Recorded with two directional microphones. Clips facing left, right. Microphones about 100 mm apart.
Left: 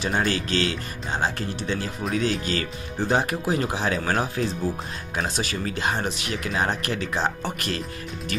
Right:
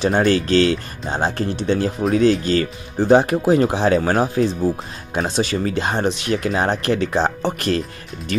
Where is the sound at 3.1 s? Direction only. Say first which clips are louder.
Right 10 dB; 25° right (ahead or behind).